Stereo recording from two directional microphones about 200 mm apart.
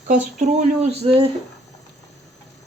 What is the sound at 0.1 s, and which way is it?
Speech, 35° right (ahead or behind).